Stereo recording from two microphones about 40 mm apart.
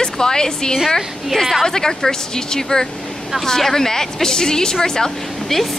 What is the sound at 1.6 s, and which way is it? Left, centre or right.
Speech, centre.